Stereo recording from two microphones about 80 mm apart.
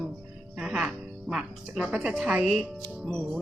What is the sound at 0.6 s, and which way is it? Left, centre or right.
Speech, centre.